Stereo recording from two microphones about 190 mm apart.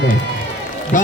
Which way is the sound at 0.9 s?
45° left (ahead or behind).